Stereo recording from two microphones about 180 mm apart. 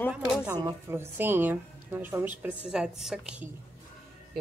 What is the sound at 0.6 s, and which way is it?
A woman's voice, 20° right (ahead or behind).